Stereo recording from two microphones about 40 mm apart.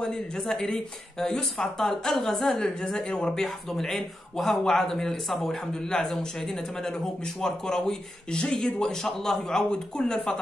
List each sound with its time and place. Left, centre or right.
0.4 s speech: centre
3.4 s speech: centre